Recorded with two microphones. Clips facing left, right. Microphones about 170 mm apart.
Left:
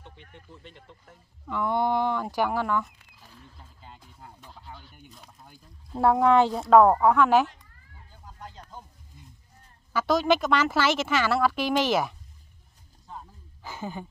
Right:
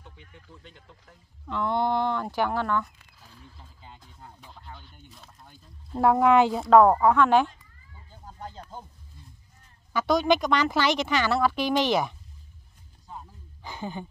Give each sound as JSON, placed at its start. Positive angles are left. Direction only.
{"t": 0.6, "sound": "speech", "side_deg": 0}
{"t": 8.4, "sound": "music", "side_deg": -30}
{"t": 9.9, "sound": "speech", "side_deg": 0}
{"t": 13.1, "sound": "a sound", "side_deg": 5}